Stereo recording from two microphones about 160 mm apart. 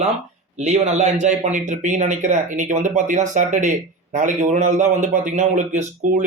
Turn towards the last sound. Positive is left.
turn(degrees=-50)  # may be behind; listen again after turning